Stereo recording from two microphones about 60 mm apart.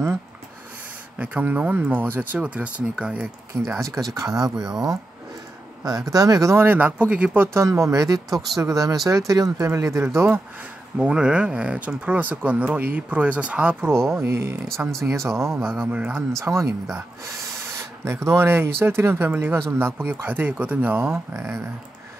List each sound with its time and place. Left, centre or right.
1.1 s speech: right
2.3 s speech: right
3.8 s speech: right
5.9 s speech: right
6.5 s speech: right
7.0 s speech: right
7.5 s speech: right
9.7 s speech: right
11.0 s speech: centre
13.7 s speech: right
15.7 s speech: right
16.3 s speech: right
18.5 s speech: right
21.0 s speech: right